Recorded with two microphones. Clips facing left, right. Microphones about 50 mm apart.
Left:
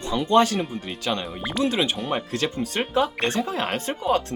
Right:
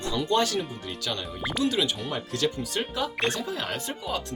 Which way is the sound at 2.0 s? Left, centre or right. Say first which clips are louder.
Left 3 dB; left.